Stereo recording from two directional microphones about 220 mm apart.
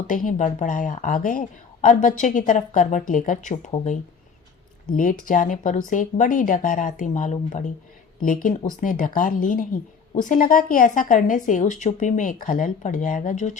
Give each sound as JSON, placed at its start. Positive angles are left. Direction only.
{"t": 0.3, "sound": "a woman's voice", "side_deg": 35}
{"t": 4.9, "sound": "a woman's voice", "side_deg": 35}